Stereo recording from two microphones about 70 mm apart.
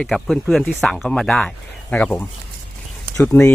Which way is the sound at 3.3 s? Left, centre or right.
Left.